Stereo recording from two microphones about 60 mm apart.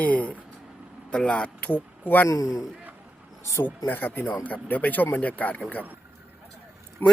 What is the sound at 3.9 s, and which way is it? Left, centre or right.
Speech, left.